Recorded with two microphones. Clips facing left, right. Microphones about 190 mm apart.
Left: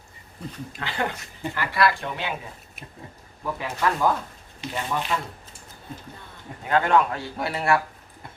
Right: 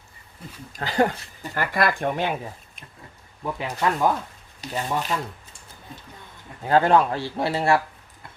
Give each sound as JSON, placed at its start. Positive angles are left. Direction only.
{"t": 0.7, "sound": "speech", "side_deg": -40}
{"t": 1.5, "sound": "speech", "side_deg": -50}
{"t": 3.4, "sound": "speech", "side_deg": -20}
{"t": 4.6, "sound": "speech", "side_deg": -40}
{"t": 6.7, "sound": "speech", "side_deg": -35}